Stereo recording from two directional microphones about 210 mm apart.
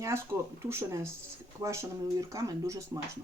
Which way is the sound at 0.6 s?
10° right (ahead or behind).